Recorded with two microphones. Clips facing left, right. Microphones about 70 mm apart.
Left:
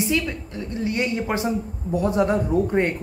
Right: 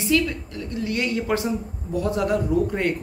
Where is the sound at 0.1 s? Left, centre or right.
Left.